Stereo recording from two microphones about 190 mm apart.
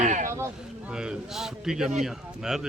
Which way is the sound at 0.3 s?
10° right (ahead or behind).